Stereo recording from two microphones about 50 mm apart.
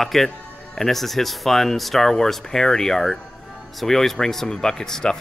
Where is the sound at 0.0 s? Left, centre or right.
Centre.